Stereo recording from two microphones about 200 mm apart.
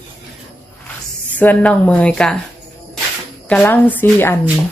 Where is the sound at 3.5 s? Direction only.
10° left (ahead or behind).